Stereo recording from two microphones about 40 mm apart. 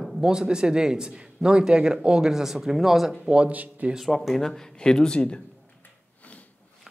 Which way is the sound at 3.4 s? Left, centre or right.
Right.